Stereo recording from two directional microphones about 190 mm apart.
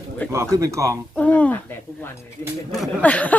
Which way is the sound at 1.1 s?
5° left (ahead or behind).